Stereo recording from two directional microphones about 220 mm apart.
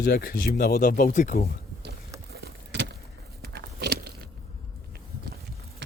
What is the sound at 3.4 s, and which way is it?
Biting, 50° right (ahead or behind).